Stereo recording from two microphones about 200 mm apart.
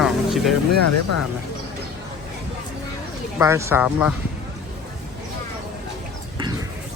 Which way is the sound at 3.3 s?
15° right (ahead or behind).